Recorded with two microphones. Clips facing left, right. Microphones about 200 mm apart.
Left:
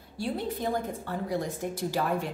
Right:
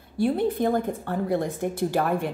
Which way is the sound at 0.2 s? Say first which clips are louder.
Right 8 dB; 55° right (ahead or behind).